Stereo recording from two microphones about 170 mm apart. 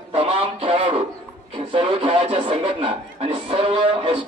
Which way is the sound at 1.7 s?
30° right (ahead or behind).